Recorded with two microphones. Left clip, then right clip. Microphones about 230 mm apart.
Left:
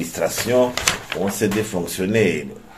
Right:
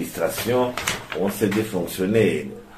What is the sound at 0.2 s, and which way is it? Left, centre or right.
Speech, left.